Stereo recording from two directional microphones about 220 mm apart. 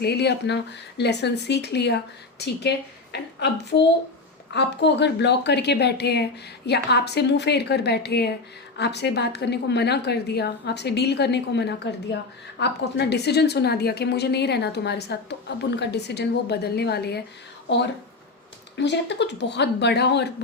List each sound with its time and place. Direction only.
0.0 s a woman's voice: 50° left (ahead or behind)
18.8 s a woman's voice: 55° left (ahead or behind)